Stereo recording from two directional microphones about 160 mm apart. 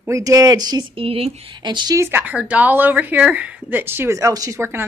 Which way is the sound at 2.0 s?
15° right (ahead or behind).